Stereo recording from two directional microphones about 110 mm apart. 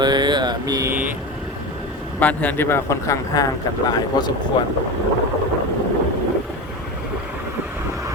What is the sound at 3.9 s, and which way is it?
Speech, 40° left (ahead or behind).